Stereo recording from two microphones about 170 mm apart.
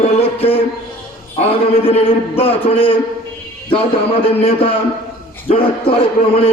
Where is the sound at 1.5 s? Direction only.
35° left (ahead or behind).